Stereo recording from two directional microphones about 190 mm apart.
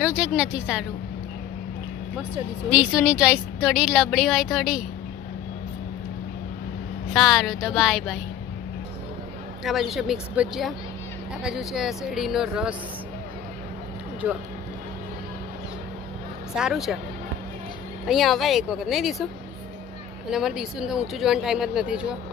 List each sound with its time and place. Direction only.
0.0 s a woman's voice: 5° right (ahead or behind)
2.7 s a woman's voice: 5° right (ahead or behind)
7.2 s a woman's voice: centre (ahead or behind)
9.6 s a woman's voice: centre (ahead or behind)
14.2 s speech: 5° right (ahead or behind)
16.5 s a woman's voice: 5° right (ahead or behind)
18.0 s a woman's voice: centre (ahead or behind)
20.2 s a woman's voice: 5° right (ahead or behind)